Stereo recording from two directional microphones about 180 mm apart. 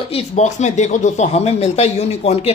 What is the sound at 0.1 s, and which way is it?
Speech, 40° left (ahead or behind).